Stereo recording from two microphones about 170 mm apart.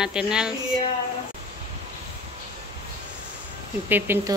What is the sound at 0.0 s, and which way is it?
Speech, 5° right (ahead or behind).